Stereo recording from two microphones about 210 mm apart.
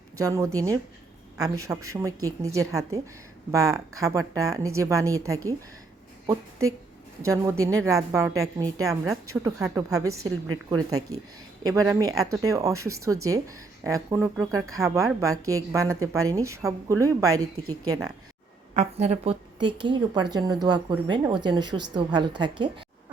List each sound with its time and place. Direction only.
0.2 s a woman's voice: 15° right (ahead or behind)
7.6 s a woman's voice: 15° right (ahead or behind)
17.3 s a woman's voice: 90° right
17.8 s a woman's voice: 15° right (ahead or behind)
18.7 s a woman's voice: 35° right (ahead or behind)